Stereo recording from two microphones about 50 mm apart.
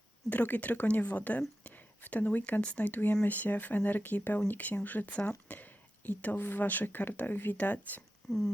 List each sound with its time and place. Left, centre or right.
0.3 s speech: left
2.8 s speech: left
8.3 s speech: centre